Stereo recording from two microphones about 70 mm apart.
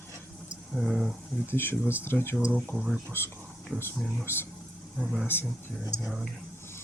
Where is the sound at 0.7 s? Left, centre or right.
Centre.